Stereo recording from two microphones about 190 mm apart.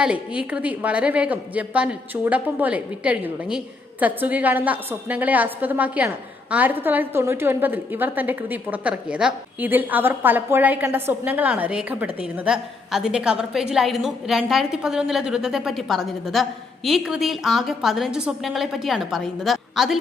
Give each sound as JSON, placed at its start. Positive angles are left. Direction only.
{"t": 0.0, "sound": "a woman's voice", "side_deg": -5}